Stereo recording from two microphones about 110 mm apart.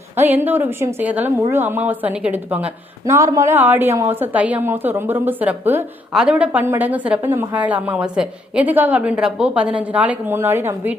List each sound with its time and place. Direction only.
0.2 s a woman's voice: 20° right (ahead or behind)
3.1 s a woman's voice: 30° right (ahead or behind)